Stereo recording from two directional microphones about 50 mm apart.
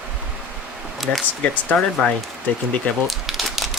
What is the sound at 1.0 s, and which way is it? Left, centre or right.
Speech, centre.